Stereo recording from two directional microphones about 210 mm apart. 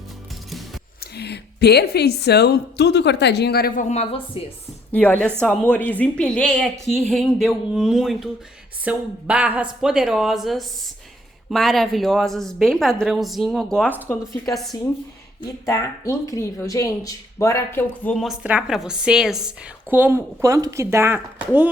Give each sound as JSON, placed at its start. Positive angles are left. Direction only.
{"t": 1.1, "sound": "a woman's voice", "side_deg": 50}
{"t": 3.8, "sound": "speech", "side_deg": 30}
{"t": 4.9, "sound": "speech", "side_deg": 10}